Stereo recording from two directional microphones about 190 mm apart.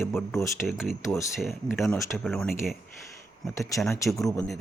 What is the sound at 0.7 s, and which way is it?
A man's voice, centre (ahead or behind).